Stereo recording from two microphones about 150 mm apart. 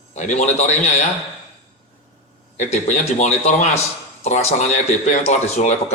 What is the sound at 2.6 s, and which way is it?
A man's voice, 50° left (ahead or behind).